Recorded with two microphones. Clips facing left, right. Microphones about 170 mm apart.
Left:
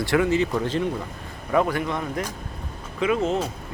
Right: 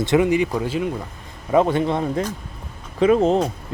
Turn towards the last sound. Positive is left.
turn(degrees=-35)  # may be behind; listen again after turning